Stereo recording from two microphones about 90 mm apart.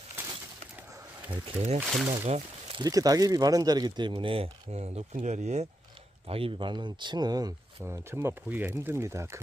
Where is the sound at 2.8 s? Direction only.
40° right (ahead or behind).